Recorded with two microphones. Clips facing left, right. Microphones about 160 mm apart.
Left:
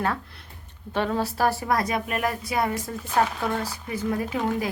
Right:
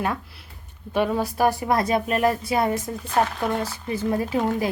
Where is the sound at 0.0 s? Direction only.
15° right (ahead or behind).